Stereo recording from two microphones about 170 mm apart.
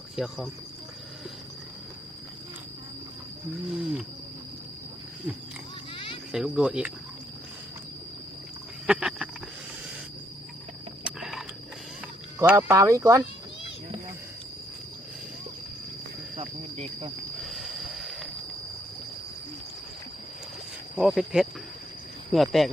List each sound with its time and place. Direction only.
0.2 s speech: centre (ahead or behind)
3.7 s speech: 5° right (ahead or behind)
6.3 s speech: 5° right (ahead or behind)
8.9 s a sound: 5° right (ahead or behind)
11.0 s a sound: centre (ahead or behind)
12.5 s speech: 20° right (ahead or behind)
16.3 s cricket: 40° right (ahead or behind)
17.4 s train wheels squealing: centre (ahead or behind)
20.9 s speech: centre (ahead or behind)